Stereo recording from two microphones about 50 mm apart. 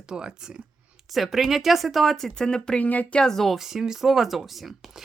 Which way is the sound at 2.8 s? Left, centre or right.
Left.